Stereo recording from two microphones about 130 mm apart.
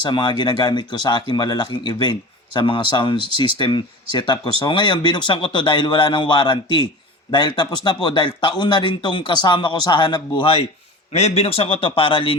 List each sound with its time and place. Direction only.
0.0 s a man's voice: 35° left (ahead or behind)